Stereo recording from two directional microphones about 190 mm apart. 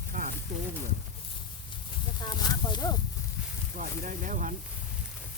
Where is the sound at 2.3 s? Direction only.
20° left (ahead or behind).